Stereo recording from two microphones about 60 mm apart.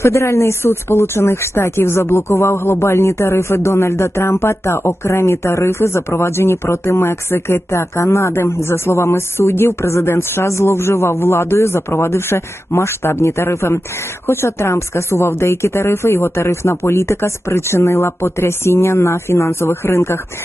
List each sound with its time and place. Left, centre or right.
0.0 s speech: left